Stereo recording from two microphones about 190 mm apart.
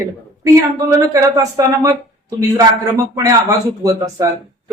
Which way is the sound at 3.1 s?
20° right (ahead or behind).